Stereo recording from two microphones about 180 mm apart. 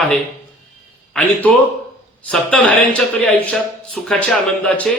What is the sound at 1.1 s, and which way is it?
A man's voice, 10° left (ahead or behind).